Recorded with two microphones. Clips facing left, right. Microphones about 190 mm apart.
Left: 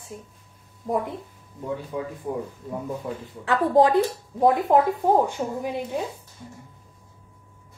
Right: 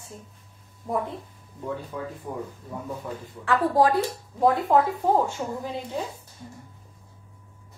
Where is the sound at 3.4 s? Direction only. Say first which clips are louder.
Left 2 dB; 20° left (ahead or behind).